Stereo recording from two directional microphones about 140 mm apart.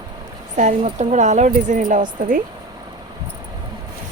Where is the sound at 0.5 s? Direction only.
60° right (ahead or behind).